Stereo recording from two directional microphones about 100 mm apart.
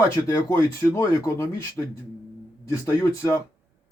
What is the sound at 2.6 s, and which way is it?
Speech, 30° left (ahead or behind).